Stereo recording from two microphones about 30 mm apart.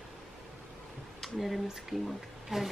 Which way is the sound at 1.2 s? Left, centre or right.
Centre.